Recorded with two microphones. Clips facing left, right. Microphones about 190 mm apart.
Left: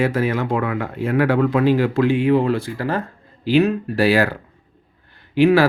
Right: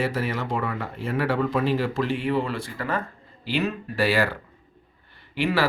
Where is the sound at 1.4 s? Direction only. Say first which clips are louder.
Left 6 dB; 90° left.